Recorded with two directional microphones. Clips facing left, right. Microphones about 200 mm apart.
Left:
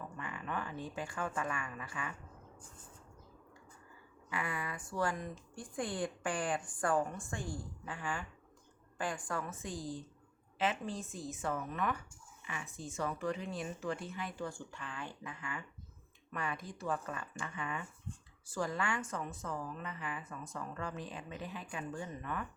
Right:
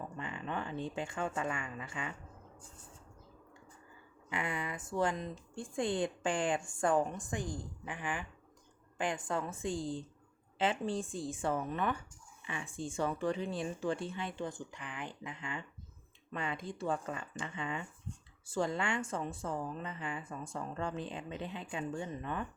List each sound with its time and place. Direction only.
0.2 s speech: 25° right (ahead or behind)
4.3 s speech: 20° right (ahead or behind)